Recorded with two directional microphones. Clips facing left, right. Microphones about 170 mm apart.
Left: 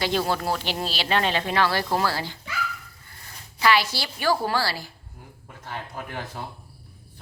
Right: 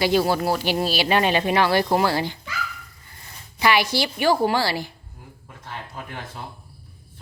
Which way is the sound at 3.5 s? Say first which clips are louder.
Right 2 dB; 15° right (ahead or behind).